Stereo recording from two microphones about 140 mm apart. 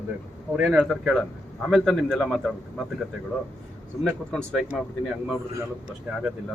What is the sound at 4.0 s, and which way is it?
Speech, 5° left (ahead or behind).